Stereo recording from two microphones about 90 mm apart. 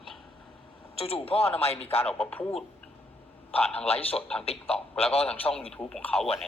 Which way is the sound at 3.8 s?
90° left.